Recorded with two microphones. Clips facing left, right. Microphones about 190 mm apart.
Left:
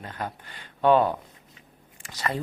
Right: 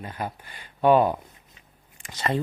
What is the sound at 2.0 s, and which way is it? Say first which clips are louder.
Speech: right 3 dB; 25° right (ahead or behind).